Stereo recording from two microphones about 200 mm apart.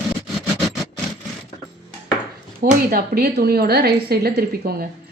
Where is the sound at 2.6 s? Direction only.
50° right (ahead or behind).